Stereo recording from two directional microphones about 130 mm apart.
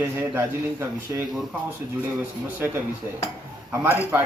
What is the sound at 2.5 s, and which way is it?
Speech, 20° right (ahead or behind).